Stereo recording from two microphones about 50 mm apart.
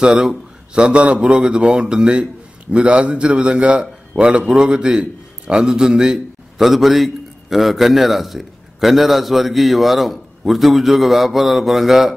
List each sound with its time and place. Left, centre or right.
0.0 s a man's voice: centre